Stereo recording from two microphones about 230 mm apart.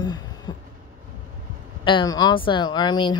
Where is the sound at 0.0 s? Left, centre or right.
Centre.